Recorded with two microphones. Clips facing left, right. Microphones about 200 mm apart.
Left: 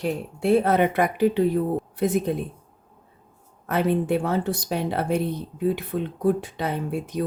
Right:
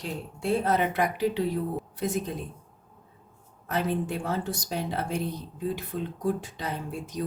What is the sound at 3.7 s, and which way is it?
Speech, 65° left (ahead or behind).